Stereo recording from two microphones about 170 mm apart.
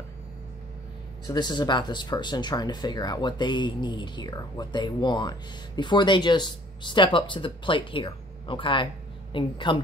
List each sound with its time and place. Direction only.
1.2 s speech: 25° left (ahead or behind)